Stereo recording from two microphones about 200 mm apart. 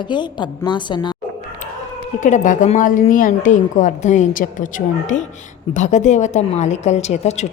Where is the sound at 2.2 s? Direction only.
35° left (ahead or behind).